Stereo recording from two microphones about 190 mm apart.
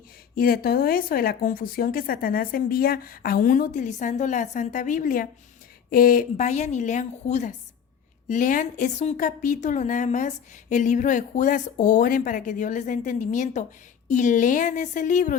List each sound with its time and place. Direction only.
0.3 s a woman's voice: 50° left (ahead or behind)